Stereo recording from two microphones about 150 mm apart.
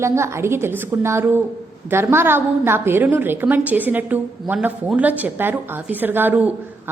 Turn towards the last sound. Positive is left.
turn(degrees=-10)  # may be behind; listen again after turning